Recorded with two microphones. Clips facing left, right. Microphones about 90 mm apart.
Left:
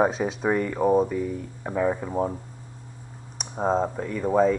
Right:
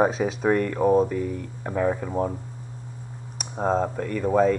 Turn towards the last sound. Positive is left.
turn(degrees=5)  # may be behind; listen again after turning